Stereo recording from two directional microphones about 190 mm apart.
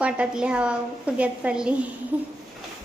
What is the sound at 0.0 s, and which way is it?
A woman's voice, 5° right (ahead or behind).